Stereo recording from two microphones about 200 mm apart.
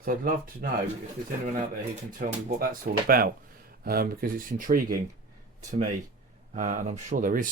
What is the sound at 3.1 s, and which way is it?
Speech, 45° right (ahead or behind).